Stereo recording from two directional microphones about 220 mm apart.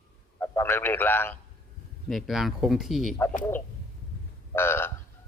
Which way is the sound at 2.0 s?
Centre (ahead or behind).